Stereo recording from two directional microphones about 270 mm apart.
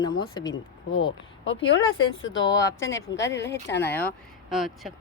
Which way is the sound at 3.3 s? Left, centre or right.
Centre.